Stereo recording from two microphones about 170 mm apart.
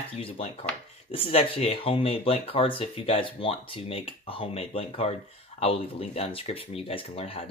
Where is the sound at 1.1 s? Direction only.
35° left (ahead or behind).